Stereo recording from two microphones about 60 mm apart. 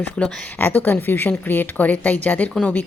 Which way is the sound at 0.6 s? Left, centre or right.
Left.